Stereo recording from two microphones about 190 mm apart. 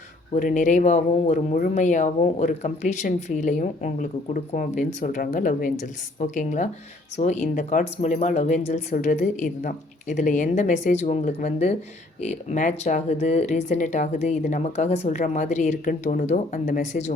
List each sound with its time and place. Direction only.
0.3 s speech: 40° left (ahead or behind)